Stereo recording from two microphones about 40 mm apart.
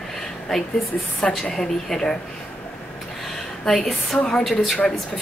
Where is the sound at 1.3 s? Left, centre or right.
Centre.